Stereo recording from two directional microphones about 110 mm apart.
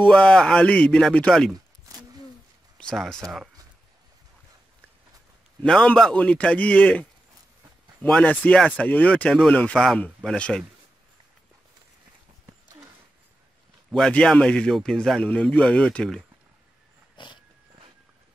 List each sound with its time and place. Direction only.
0.1 s speech: 5° left (ahead or behind)
2.8 s speech: 5° left (ahead or behind)
5.6 s speech: 5° left (ahead or behind)
8.1 s speech: 10° left (ahead or behind)
13.8 s a man's voice: centre (ahead or behind)
17.2 s dog: 45° left (ahead or behind)